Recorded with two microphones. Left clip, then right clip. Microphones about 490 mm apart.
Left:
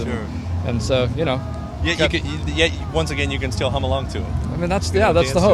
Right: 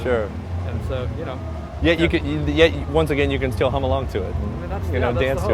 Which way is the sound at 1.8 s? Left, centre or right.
Right.